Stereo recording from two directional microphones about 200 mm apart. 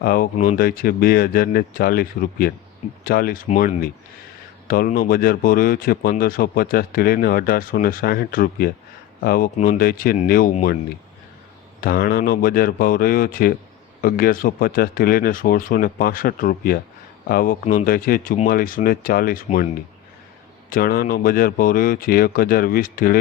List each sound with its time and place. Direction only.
0.0 s speech: 45° left (ahead or behind)
4.7 s speech: 45° left (ahead or behind)
11.8 s speech: 45° left (ahead or behind)
20.7 s speech: 45° left (ahead or behind)